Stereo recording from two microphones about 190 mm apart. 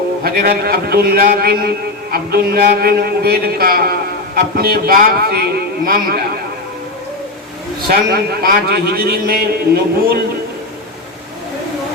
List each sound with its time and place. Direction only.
0.2 s a man's voice: 55° right (ahead or behind)
7.8 s a man's voice: 55° right (ahead or behind)